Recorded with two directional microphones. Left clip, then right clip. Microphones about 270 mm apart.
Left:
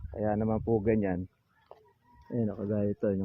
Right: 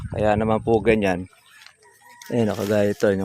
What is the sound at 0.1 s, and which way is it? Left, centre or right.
Speech, right.